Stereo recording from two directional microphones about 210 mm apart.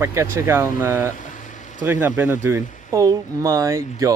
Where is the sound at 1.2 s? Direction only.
35° left (ahead or behind).